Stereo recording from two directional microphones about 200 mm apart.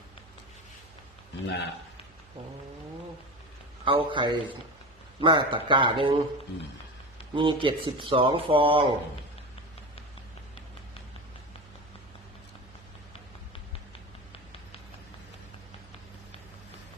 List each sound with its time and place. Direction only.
1.5 s a man's voice: 60° left (ahead or behind)
3.8 s speech: 25° right (ahead or behind)
7.3 s speech: 25° right (ahead or behind)